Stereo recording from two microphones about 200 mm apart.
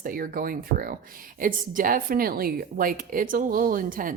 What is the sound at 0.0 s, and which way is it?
Speech, 45° right (ahead or behind).